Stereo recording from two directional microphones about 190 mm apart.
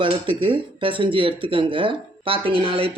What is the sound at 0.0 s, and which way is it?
Speech, 25° right (ahead or behind).